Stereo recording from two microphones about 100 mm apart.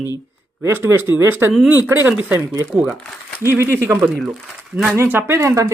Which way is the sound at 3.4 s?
25° right (ahead or behind).